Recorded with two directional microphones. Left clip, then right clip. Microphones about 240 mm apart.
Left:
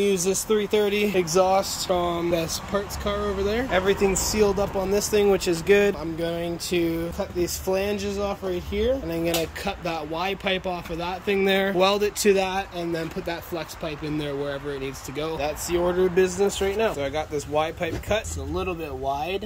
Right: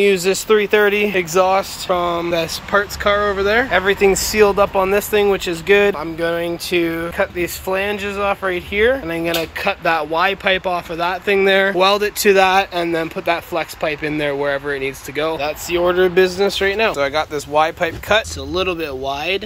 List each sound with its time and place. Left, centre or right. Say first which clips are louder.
0.0 s speech: right 8 dB; centre
16.3 s speech: right 7 dB; centre
18.6 s speech: right 10 dB; right
19.0 s speech: right 5 dB; centre